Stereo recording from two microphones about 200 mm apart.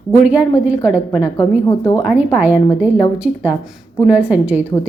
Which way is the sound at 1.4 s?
15° left (ahead or behind).